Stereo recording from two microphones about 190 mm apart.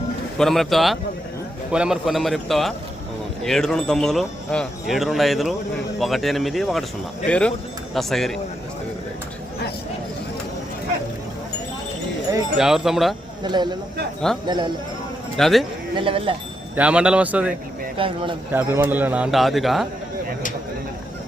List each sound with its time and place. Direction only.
0.3 s speech: centre (ahead or behind)
12.5 s speech: 5° right (ahead or behind)
13.4 s speech: 25° right (ahead or behind)
15.4 s speech: centre (ahead or behind)
16.0 s speech: 25° right (ahead or behind)
16.7 s a man's voice: 5° right (ahead or behind)
17.9 s speech: 25° right (ahead or behind)
18.5 s speech: 10° right (ahead or behind)